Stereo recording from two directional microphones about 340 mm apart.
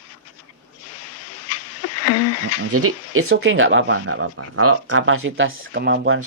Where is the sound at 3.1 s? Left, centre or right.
Right.